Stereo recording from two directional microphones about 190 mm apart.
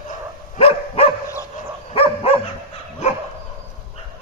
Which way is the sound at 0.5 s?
30° left (ahead or behind).